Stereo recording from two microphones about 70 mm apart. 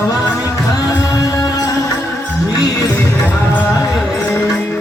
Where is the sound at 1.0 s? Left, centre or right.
Left.